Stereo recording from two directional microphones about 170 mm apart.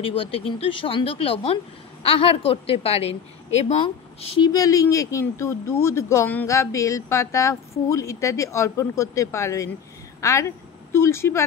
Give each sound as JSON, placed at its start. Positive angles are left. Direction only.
{"t": 0.0, "sound": "a woman's voice", "side_deg": 30}
{"t": 4.5, "sound": "speech", "side_deg": 20}